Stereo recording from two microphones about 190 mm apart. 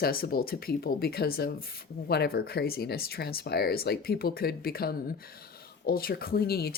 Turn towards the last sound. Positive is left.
turn(degrees=55)  # may be behind; listen again after turning